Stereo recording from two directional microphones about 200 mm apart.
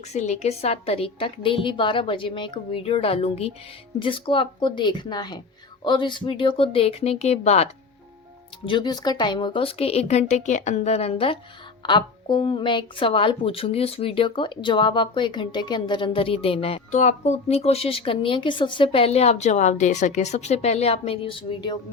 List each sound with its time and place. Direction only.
0.0 s a woman's voice: 35° left (ahead or behind)